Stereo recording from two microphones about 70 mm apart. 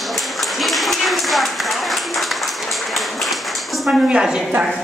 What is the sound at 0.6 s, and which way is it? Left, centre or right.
Clapping, centre.